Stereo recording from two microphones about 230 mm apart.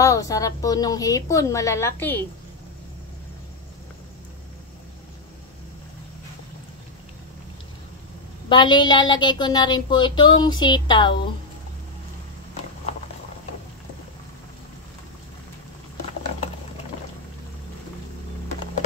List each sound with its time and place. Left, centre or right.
0.0 s a woman's voice: centre
8.5 s a woman's voice: centre